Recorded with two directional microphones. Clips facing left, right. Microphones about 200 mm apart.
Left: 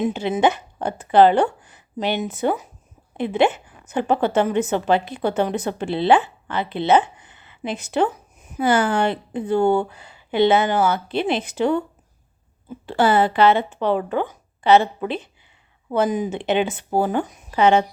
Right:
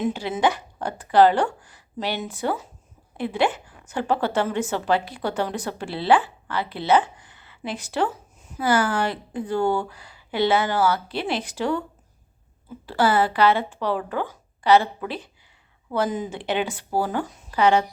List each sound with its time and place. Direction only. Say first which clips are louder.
0.0 s a woman's voice: left 3 dB; 20° left (ahead or behind)
12.8 s a woman's voice: left 3 dB; 25° left (ahead or behind)